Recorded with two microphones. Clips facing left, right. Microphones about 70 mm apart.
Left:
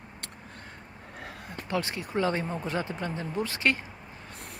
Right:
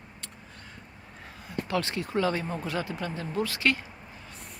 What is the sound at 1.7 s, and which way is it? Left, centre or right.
Speech, centre.